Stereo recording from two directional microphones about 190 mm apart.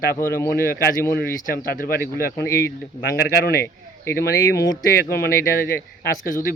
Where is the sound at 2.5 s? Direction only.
15° left (ahead or behind).